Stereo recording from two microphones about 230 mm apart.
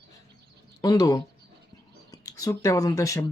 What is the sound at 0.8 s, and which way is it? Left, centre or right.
Speech, centre.